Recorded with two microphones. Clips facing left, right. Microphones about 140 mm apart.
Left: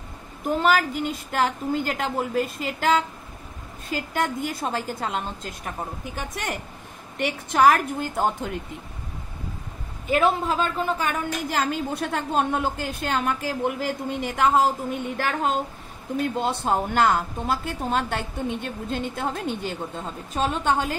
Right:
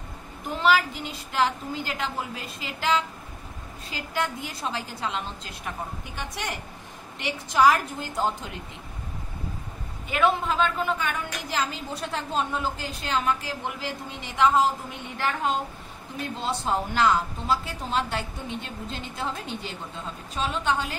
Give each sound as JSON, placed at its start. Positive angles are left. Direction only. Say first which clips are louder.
{"t": 0.6, "sound": "a woman's voice", "louder": "left 1 dB", "side_deg": 45}
{"t": 10.0, "sound": "a woman's voice", "louder": "left 3 dB", "side_deg": 40}
{"t": 16.3, "sound": "a woman's voice", "louder": "even", "side_deg": 55}